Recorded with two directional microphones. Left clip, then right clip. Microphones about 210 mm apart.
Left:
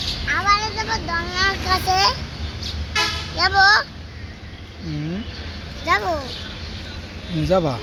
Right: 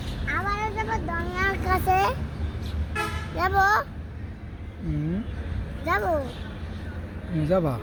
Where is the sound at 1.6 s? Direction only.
40° right (ahead or behind).